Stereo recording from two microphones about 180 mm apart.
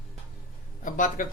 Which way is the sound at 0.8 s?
45° left (ahead or behind).